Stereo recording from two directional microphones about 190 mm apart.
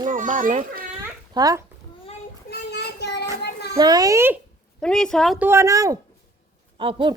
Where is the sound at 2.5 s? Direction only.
60° left (ahead or behind).